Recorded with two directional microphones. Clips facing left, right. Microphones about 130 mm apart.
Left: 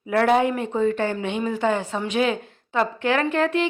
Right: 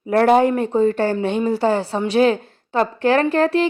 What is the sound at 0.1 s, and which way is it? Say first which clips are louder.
A woman's voice: right 5 dB; 40° right (ahead or behind).